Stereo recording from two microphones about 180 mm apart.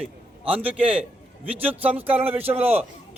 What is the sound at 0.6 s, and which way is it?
A man's voice, 5° right (ahead or behind).